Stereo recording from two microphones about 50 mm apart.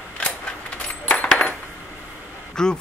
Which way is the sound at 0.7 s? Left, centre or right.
Left.